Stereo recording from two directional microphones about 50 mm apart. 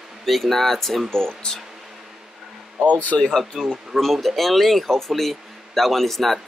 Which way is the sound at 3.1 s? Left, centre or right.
Centre.